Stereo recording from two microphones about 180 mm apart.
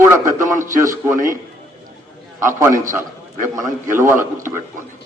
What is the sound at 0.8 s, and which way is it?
Speech, 15° right (ahead or behind).